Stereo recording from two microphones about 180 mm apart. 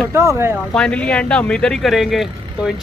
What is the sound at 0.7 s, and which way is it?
Speech, 5° left (ahead or behind).